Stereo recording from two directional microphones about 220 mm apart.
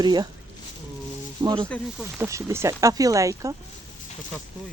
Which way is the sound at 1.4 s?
20° right (ahead or behind).